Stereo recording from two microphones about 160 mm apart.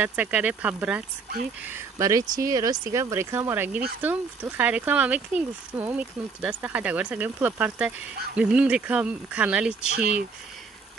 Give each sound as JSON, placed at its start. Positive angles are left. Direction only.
{"t": 0.0, "sound": "speech", "side_deg": -10}